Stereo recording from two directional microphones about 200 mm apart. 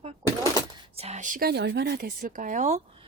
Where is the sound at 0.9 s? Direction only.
35° right (ahead or behind).